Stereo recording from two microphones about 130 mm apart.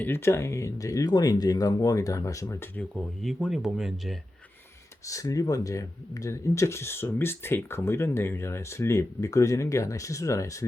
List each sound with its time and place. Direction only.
0.0 s speech: 20° left (ahead or behind)
2.9 s speech: centre (ahead or behind)
5.0 s speech: 25° left (ahead or behind)